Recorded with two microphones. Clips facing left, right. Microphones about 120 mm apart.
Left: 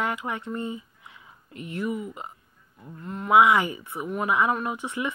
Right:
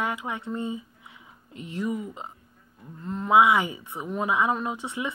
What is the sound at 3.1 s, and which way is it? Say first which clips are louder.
Speech: even; 30° right (ahead or behind).